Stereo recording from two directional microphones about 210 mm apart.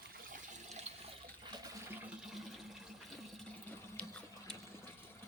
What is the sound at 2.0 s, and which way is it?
Water, 5° right (ahead or behind).